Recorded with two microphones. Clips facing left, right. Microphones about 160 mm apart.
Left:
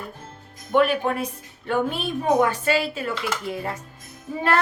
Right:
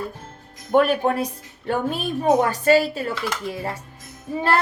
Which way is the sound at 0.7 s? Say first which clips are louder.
Right 2 dB; 45° right (ahead or behind).